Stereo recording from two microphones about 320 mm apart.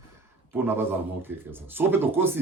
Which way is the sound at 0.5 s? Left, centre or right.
Centre.